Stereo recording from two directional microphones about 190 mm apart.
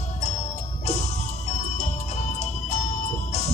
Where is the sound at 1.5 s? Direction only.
35° left (ahead or behind).